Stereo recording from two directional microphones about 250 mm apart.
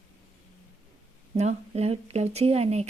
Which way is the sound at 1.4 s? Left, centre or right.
Right.